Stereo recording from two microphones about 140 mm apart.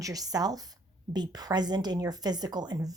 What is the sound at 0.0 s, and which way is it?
A woman's voice, 25° right (ahead or behind).